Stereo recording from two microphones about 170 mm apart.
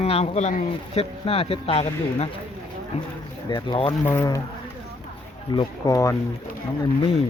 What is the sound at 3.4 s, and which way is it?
Speech, 25° left (ahead or behind).